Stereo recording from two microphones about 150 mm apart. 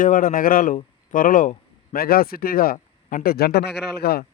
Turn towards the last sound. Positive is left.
turn(degrees=90)